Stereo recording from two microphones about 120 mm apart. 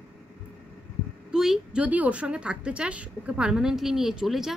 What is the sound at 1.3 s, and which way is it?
A woman's voice, 5° right (ahead or behind).